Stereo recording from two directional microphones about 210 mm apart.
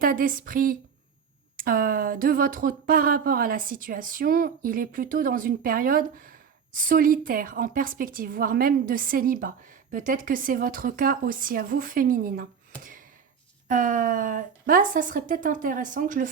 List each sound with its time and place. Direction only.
0.0 s a woman's voice: 40° right (ahead or behind)
13.7 s a woman's voice: 40° right (ahead or behind)